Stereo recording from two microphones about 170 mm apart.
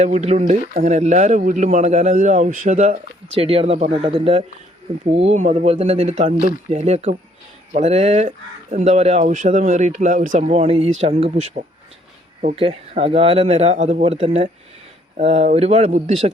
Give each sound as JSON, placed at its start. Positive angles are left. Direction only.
{"t": 0.0, "sound": "speech", "side_deg": -45}